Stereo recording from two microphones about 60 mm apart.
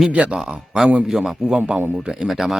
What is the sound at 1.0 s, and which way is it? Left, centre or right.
A man's voice, centre.